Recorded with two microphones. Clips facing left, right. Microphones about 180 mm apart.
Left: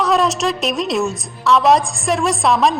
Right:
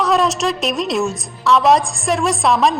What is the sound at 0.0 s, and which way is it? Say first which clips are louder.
A woman's voice: even; centre (ahead or behind).